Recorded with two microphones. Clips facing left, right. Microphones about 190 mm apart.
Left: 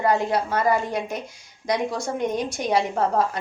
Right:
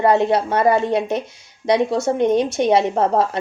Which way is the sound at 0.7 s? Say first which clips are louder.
Right 7 dB; 25° right (ahead or behind).